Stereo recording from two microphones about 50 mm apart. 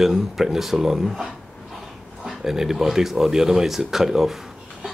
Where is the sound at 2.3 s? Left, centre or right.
Centre.